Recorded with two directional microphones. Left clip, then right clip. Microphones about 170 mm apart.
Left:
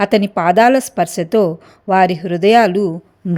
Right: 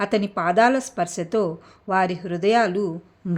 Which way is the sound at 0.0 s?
35° left (ahead or behind).